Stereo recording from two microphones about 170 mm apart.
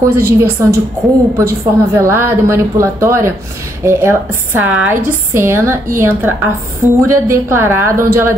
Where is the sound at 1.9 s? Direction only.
15° right (ahead or behind).